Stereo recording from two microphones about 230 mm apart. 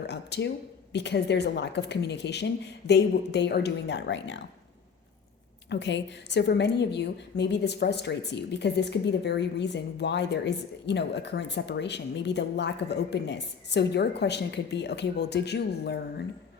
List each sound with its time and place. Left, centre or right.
0.1 s a woman's voice: left
5.6 s a woman's voice: left